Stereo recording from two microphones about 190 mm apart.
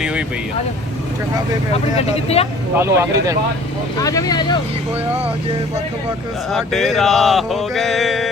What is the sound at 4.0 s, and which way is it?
Speech, 20° left (ahead or behind).